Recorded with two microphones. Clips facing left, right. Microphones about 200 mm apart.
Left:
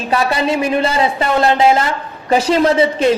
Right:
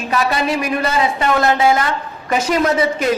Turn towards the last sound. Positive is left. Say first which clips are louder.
# left 4 dB
turn(degrees=30)  # may be behind; listen again after turning